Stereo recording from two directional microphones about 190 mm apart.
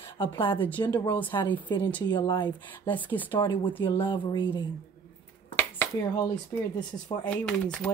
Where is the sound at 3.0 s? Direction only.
10° left (ahead or behind).